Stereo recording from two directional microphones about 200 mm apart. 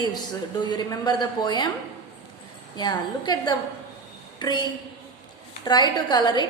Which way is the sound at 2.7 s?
20° left (ahead or behind).